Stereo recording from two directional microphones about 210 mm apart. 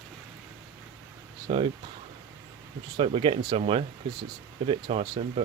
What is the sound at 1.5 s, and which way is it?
Speech, 25° right (ahead or behind).